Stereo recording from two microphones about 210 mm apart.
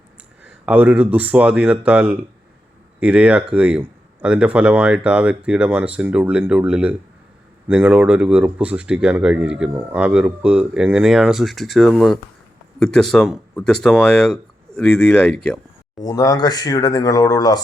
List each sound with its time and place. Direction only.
0.6 s speech: 5° right (ahead or behind)
16.0 s speech: 15° left (ahead or behind)